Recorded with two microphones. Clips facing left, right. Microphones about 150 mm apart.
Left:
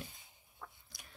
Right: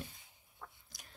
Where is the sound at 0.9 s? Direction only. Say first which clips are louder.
Left 1 dB; 45° right (ahead or behind).